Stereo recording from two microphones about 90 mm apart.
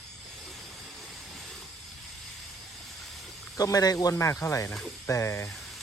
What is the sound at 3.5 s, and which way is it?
Speech, 40° left (ahead or behind).